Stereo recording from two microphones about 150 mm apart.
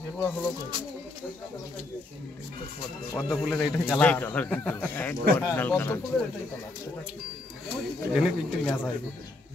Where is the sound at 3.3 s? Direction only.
Centre (ahead or behind).